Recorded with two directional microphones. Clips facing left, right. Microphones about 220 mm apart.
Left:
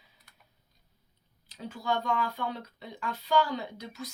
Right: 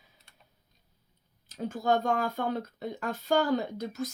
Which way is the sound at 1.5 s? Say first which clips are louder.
Right 5 dB; 45° right (ahead or behind).